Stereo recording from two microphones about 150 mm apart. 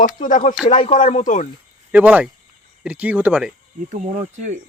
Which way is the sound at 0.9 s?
50° left (ahead or behind).